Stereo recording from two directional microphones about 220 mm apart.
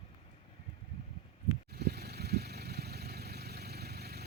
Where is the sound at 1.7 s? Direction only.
45° right (ahead or behind).